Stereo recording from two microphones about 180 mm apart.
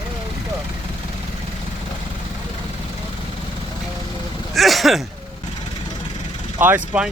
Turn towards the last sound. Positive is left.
turn(degrees=-10)  # may be behind; listen again after turning